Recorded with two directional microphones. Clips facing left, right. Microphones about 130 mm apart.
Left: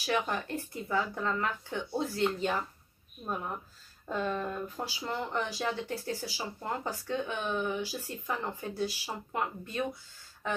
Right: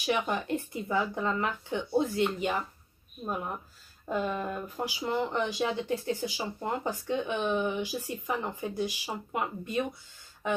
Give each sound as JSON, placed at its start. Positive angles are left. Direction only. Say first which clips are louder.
{"t": 0.0, "sound": "speech", "louder": "right 2 dB", "side_deg": -20}
{"t": 4.1, "sound": "speech", "louder": "right 2 dB", "side_deg": -10}